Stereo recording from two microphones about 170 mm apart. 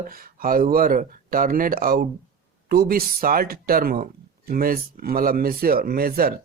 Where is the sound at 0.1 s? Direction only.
55° right (ahead or behind).